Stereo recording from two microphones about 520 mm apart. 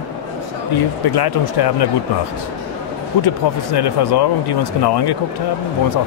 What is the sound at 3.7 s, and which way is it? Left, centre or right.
Speech, left.